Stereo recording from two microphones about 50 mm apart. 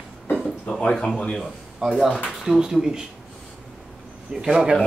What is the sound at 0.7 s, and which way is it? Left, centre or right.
Speech, left.